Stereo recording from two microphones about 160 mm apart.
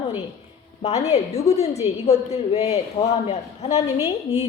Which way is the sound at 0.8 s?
40° left (ahead or behind).